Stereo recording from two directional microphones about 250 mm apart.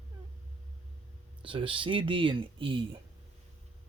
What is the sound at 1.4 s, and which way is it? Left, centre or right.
Speech, right.